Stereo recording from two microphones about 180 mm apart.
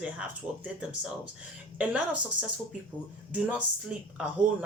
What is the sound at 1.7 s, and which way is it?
Speech, 5° right (ahead or behind).